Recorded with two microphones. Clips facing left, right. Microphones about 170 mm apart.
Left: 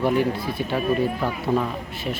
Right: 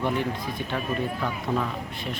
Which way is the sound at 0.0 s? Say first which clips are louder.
Left 6 dB; 10° left (ahead or behind).